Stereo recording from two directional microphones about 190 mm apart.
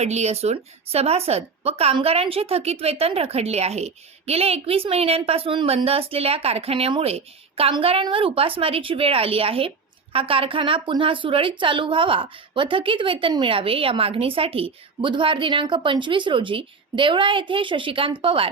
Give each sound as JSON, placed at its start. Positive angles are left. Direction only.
{"t": 0.0, "sound": "a woman's voice", "side_deg": -35}